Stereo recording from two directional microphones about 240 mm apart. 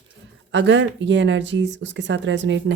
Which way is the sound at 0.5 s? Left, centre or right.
Right.